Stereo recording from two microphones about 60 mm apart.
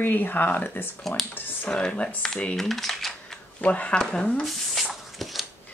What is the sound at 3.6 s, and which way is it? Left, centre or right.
Speech, left.